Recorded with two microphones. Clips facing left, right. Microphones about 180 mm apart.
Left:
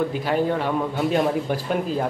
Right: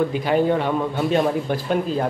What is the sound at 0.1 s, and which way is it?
A man's voice, centre (ahead or behind).